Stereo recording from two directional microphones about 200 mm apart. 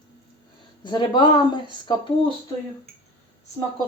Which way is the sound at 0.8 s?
25° left (ahead or behind).